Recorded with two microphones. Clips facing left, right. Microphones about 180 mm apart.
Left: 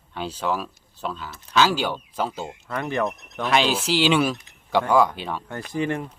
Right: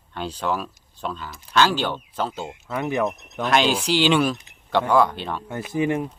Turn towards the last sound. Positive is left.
turn(degrees=-15)  # may be behind; listen again after turning